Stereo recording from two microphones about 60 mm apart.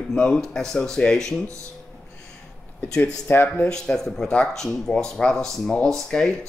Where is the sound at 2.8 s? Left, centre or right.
Centre.